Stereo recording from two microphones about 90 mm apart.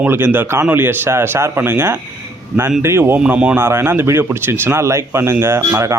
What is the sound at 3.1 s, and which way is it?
Speech, 15° right (ahead or behind).